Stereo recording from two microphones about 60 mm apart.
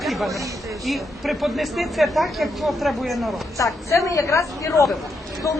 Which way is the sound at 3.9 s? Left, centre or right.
Left.